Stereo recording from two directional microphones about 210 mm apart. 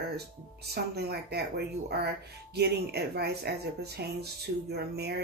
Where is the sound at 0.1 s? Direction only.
50° right (ahead or behind).